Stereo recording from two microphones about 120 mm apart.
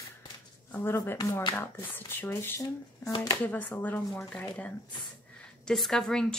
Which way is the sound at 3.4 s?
15° left (ahead or behind).